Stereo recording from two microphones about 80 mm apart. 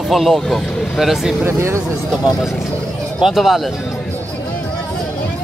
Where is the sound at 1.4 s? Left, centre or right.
Right.